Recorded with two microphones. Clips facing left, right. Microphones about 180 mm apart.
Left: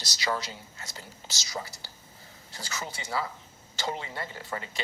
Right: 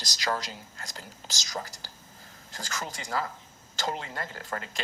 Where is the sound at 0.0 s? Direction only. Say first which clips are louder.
Even; 40° right (ahead or behind).